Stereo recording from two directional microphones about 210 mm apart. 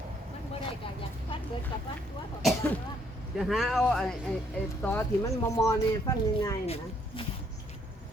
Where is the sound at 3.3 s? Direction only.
Centre (ahead or behind); by 6.6 s 15° left (ahead or behind).